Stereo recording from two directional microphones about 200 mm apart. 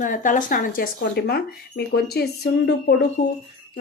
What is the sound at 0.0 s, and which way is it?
Speech, 40° left (ahead or behind).